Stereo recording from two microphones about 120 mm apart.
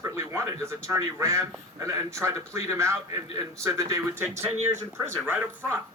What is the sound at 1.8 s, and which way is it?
Speech, 25° right (ahead or behind).